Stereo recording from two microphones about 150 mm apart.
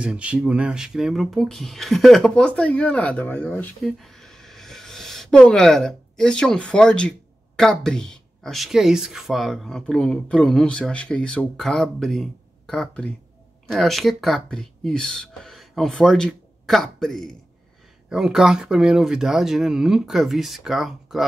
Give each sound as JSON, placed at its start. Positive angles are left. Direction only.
{"t": 0.0, "sound": "speech", "side_deg": -10}